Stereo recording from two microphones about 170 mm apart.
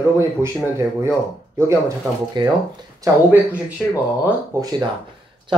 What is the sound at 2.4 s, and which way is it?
Speech, 25° right (ahead or behind).